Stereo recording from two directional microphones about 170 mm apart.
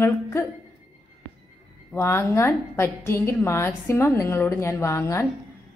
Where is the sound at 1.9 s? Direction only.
15° left (ahead or behind).